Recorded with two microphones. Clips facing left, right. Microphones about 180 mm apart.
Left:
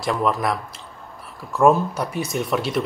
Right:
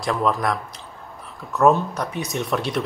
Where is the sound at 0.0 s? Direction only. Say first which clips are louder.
Even; centre (ahead or behind).